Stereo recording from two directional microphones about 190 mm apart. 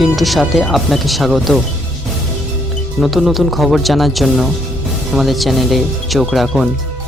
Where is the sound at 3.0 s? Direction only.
Centre (ahead or behind).